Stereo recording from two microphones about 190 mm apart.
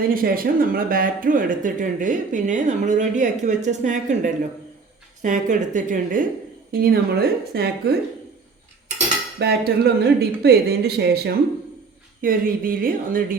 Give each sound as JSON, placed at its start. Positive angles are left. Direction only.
{"t": 0.1, "sound": "a woman's voice", "side_deg": -50}
{"t": 9.4, "sound": "speech", "side_deg": -55}
{"t": 12.2, "sound": "speech", "side_deg": -50}